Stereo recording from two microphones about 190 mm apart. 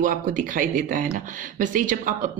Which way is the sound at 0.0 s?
45° right (ahead or behind).